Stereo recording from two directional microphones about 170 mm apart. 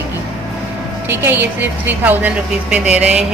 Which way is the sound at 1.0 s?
10° right (ahead or behind).